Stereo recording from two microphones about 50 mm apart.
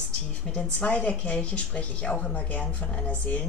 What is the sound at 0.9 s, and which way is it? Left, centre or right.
Speech, left.